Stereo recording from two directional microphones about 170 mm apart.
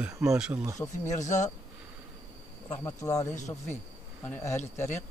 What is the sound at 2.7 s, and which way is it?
Speech, 15° left (ahead or behind).